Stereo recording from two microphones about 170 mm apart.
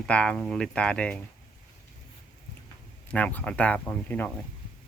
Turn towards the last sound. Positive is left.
turn(degrees=10)  # may be behind; listen again after turning